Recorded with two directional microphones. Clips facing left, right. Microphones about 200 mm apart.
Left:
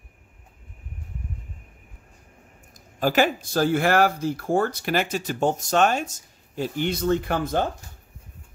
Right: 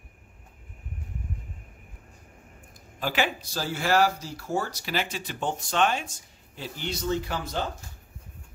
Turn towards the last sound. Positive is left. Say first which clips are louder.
# left 7 dB
turn(degrees=55)  # may be behind; listen again after turning